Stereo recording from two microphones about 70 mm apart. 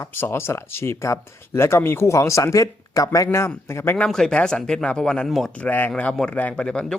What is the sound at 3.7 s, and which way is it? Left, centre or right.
Speech, left.